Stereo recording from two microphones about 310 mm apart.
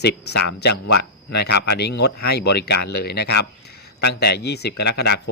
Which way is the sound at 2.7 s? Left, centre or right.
Left.